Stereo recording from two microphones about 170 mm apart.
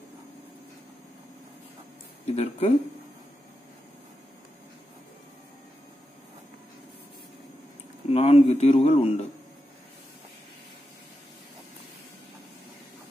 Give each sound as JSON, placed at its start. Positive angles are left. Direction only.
{"t": 2.2, "sound": "speech", "side_deg": 40}
{"t": 8.1, "sound": "speech", "side_deg": 35}